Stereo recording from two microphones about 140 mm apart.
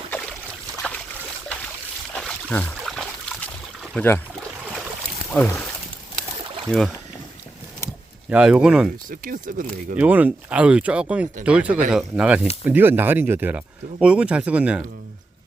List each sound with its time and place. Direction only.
0.8 s boat: 10° left (ahead or behind)
2.1 s a sound: 10° left (ahead or behind)
3.9 s speech: 15° left (ahead or behind)
5.3 s speech: 5° left (ahead or behind)
6.7 s speech: centre (ahead or behind)
8.3 s speech: 5° right (ahead or behind)
9.0 s speech: 75° right (ahead or behind)
10.0 s speech: 10° right (ahead or behind)